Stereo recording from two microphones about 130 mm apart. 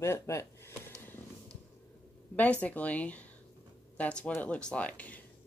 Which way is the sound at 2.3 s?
10° left (ahead or behind).